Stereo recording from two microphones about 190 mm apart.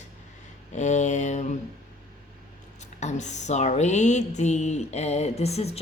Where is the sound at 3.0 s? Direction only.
40° left (ahead or behind).